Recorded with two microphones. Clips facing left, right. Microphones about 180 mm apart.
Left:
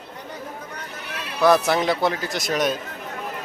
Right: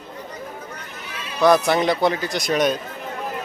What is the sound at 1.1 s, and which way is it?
Horse, 65° left (ahead or behind).